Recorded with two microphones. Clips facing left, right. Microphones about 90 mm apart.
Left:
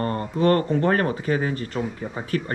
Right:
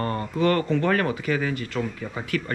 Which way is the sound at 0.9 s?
35° left (ahead or behind).